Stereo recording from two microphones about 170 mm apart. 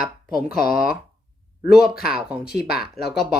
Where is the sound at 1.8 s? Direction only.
65° left (ahead or behind).